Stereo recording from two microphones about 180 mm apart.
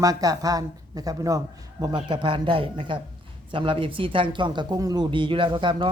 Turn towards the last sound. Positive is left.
turn(degrees=-25)  # may be behind; listen again after turning